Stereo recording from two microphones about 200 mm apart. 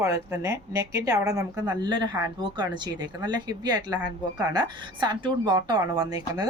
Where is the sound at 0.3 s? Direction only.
15° right (ahead or behind).